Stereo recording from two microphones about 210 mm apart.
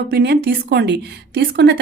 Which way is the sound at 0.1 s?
50° right (ahead or behind).